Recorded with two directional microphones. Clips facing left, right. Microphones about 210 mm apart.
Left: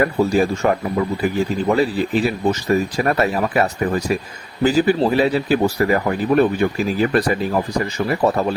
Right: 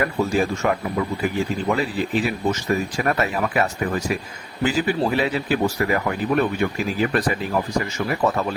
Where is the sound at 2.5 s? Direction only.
35° left (ahead or behind).